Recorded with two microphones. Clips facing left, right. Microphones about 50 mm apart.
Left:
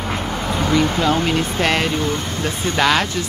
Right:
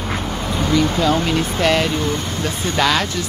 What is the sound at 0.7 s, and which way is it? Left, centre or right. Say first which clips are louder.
Speech: right 1 dB; left.